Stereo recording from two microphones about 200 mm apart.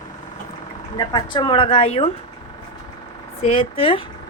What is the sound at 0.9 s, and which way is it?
Speech, 20° left (ahead or behind).